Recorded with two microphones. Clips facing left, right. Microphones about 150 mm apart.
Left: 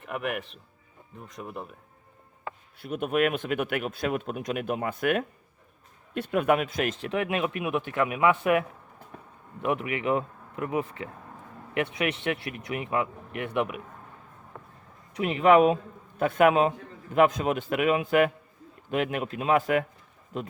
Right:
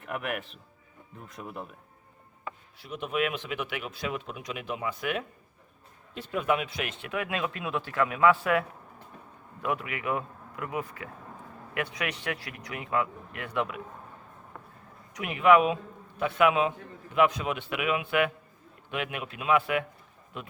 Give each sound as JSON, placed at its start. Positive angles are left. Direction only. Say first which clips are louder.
{"t": 0.0, "sound": "speech", "louder": "left 2 dB", "side_deg": 0}
{"t": 2.7, "sound": "speech", "louder": "left 5 dB", "side_deg": 55}
{"t": 7.1, "sound": "speech", "louder": "left 4 dB", "side_deg": 25}
{"t": 9.6, "sound": "speech", "louder": "left 4 dB", "side_deg": 20}
{"t": 15.1, "sound": "a man's voice", "louder": "left 2 dB", "side_deg": 30}